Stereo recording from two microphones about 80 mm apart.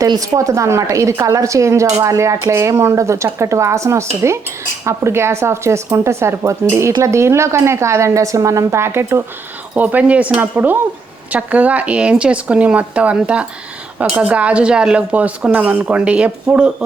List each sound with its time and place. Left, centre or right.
0.2 s a woman's voice: right
9.7 s speech: right